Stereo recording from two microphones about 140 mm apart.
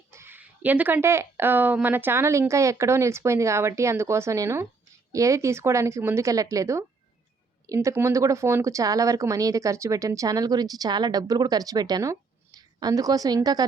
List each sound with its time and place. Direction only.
0.1 s speech: 15° right (ahead or behind)